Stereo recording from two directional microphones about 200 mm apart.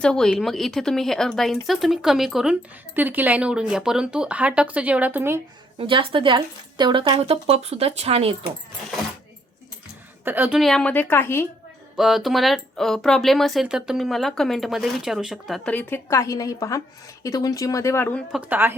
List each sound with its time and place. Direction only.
0.0 s speech: 5° left (ahead or behind)
5.8 s speech: 25° right (ahead or behind)
10.2 s speech: 10° right (ahead or behind); by 11.4 s 10° left (ahead or behind)
11.9 s speech: centre (ahead or behind)
18.3 s a woman's voice: 5° right (ahead or behind)